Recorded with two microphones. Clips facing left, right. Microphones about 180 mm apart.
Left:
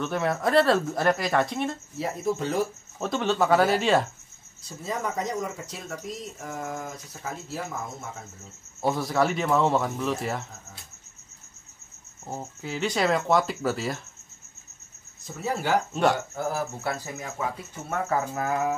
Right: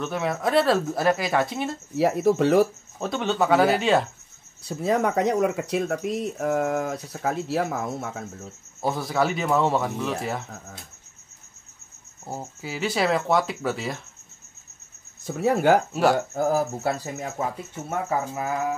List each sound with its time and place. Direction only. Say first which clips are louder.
0.0 s speech: even; centre (ahead or behind)
2.0 s speech: right 9 dB; 75° right (ahead or behind)
3.0 s speech: right 1 dB; centre (ahead or behind)
4.6 s speech: right 8 dB; 65° right (ahead or behind)
8.8 s speech: even; centre (ahead or behind)
12.3 s speech: right 1 dB; 5° right (ahead or behind)
15.2 s speech: right 8 dB; 60° right (ahead or behind)
15.9 s speech: right 2 dB; 5° right (ahead or behind)
16.3 s speech: right 6 dB; 40° right (ahead or behind)